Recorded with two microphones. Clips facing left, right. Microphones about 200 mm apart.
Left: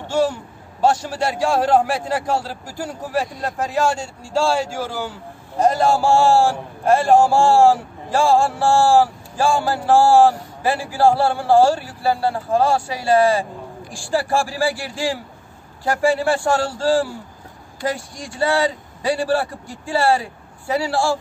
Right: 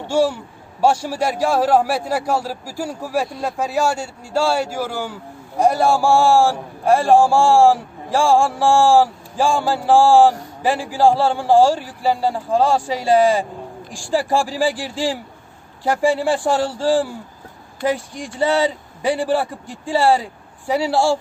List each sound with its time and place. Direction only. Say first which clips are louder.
0.1 s a man's voice: right 2 dB; 10° right (ahead or behind)